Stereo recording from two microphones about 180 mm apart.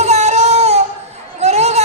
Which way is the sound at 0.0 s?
40° right (ahead or behind).